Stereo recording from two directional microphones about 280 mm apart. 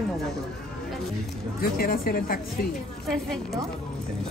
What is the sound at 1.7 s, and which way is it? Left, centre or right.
Speech, left.